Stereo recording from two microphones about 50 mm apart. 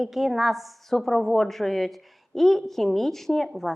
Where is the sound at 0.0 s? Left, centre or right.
Centre.